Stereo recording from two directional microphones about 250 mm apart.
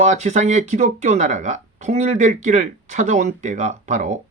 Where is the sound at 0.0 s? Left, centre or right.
Right.